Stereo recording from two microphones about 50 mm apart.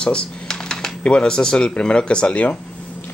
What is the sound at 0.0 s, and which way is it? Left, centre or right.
Speech, centre.